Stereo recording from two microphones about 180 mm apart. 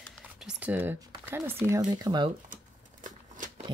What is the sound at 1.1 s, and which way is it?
Speech, 15° right (ahead or behind).